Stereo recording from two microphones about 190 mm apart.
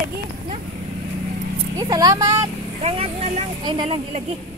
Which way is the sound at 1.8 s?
20° right (ahead or behind).